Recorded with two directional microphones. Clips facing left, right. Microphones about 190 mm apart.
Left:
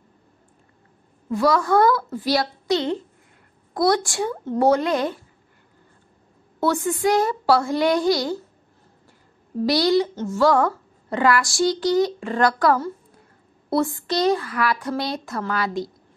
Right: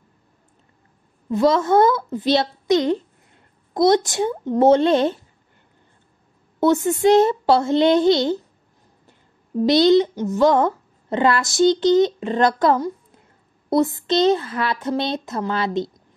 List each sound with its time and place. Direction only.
1.3 s a woman's voice: 20° right (ahead or behind)
6.6 s a woman's voice: 20° right (ahead or behind)
9.7 s a woman's voice: 20° right (ahead or behind)